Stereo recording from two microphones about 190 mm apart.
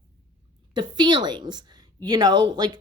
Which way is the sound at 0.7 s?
25° right (ahead or behind).